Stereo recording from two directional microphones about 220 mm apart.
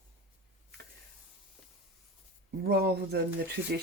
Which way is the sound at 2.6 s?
45° right (ahead or behind).